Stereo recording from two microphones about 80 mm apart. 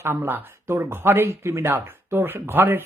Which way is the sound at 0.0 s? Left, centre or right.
Right.